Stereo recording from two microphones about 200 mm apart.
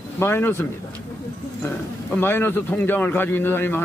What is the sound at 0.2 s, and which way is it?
Speech, 10° left (ahead or behind).